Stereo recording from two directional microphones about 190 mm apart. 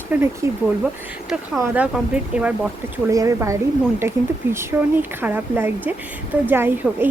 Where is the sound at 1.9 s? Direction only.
5° right (ahead or behind).